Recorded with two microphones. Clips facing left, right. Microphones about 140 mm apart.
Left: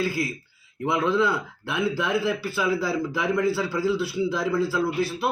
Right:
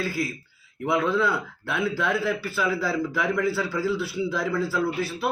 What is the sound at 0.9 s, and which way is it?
Speech, 20° left (ahead or behind).